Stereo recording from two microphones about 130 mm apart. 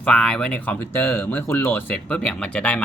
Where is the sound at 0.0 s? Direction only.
5° left (ahead or behind).